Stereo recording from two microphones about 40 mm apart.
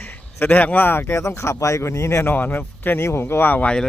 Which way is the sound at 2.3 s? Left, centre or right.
Left.